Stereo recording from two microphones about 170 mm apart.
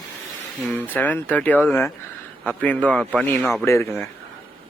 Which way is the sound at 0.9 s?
10° left (ahead or behind).